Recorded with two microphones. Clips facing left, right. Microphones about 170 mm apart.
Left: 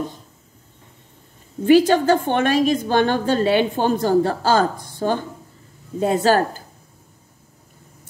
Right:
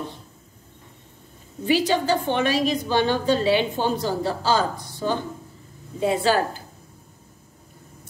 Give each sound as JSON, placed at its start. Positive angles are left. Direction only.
{"t": 1.7, "sound": "a woman's voice", "side_deg": 50}